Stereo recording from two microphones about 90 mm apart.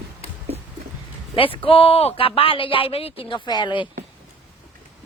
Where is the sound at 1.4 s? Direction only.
80° left; by 3.8 s 60° left (ahead or behind).